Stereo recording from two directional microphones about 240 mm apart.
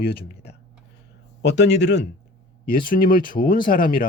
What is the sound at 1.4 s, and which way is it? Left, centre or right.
A man's voice, left.